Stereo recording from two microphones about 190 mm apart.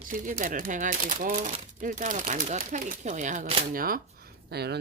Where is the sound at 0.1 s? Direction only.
45° right (ahead or behind).